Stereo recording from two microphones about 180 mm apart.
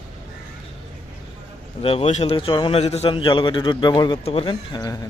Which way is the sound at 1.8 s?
30° left (ahead or behind).